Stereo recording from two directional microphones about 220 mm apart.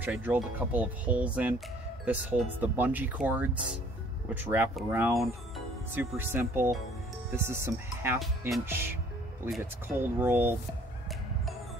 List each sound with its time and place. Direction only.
0.0 s speech: 10° right (ahead or behind)